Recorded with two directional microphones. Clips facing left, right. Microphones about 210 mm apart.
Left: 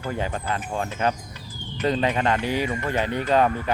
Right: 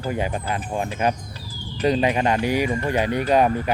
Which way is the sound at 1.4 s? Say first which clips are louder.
Right 3 dB; 35° right (ahead or behind).